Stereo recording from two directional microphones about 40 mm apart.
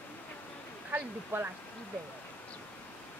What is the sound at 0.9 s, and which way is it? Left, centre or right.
Speech, right.